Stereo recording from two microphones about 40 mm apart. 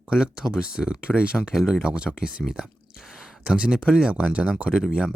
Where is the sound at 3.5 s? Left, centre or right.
Right.